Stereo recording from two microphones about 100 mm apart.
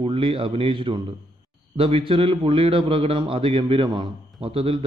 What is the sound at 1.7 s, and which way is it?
A man's voice, 70° right (ahead or behind).